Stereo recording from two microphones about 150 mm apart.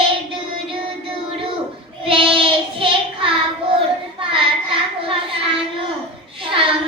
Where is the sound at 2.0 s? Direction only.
35° right (ahead or behind).